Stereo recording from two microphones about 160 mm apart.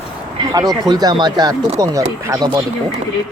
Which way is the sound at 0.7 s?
25° right (ahead or behind).